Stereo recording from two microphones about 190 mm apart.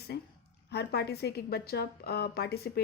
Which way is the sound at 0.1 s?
55° left (ahead or behind).